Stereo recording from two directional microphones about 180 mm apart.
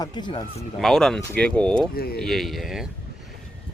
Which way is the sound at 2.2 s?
Centre (ahead or behind).